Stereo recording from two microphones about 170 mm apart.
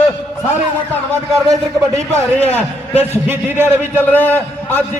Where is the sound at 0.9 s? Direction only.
Centre (ahead or behind).